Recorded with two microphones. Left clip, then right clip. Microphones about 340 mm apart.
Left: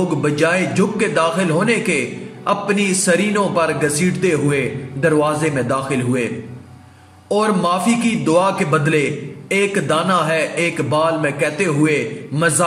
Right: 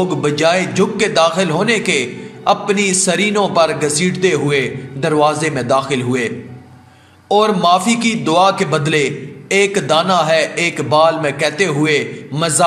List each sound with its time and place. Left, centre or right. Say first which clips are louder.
0.2 s a man's voice: right 3 dB; centre
7.2 s a man's voice: right 5 dB; centre